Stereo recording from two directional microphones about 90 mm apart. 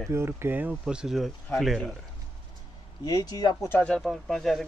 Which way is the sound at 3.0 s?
45° left (ahead or behind).